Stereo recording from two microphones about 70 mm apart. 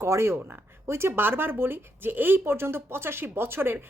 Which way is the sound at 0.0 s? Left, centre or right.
Right.